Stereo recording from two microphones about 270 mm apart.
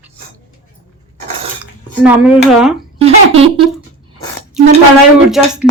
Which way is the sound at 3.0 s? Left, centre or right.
Right.